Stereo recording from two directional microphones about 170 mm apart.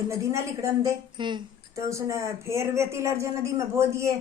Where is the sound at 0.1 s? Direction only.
15° right (ahead or behind).